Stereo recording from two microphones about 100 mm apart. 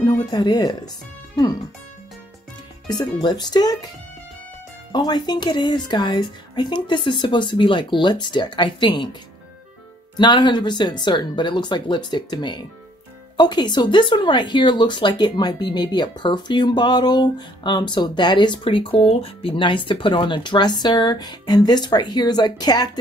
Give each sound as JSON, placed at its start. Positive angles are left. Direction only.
{"t": 0.0, "sound": "speech", "side_deg": 45}
{"t": 2.9, "sound": "speech", "side_deg": 45}
{"t": 4.9, "sound": "speech", "side_deg": 45}
{"t": 10.1, "sound": "speech", "side_deg": 45}